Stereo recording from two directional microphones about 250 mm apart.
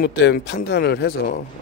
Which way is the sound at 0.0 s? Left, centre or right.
Left.